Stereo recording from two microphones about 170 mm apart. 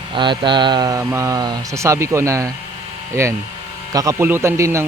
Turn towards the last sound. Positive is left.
turn(degrees=-15)  # may be behind; listen again after turning